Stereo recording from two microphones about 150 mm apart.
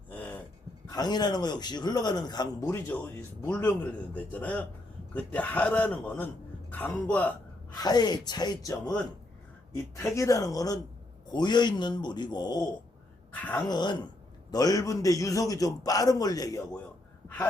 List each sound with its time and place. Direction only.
0.1 s dog: 10° left (ahead or behind)
0.9 s a man's voice: 25° left (ahead or behind); by 7.3 s 10° left (ahead or behind)
7.8 s a man's voice: 25° left (ahead or behind)
10.2 s a man's voice: 20° left (ahead or behind)
13.3 s speech: 10° left (ahead or behind)
13.7 s a man's voice: 30° left (ahead or behind)